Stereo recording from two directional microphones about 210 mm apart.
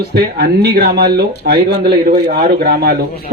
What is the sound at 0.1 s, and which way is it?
Speech, 50° right (ahead or behind).